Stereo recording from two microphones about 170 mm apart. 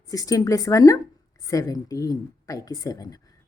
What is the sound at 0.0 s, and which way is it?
Speech, 20° left (ahead or behind).